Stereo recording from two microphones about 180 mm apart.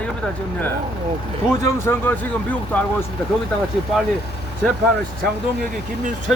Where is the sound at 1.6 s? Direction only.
15° left (ahead or behind).